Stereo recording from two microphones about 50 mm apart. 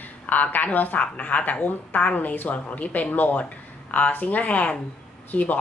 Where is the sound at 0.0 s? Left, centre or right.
Left.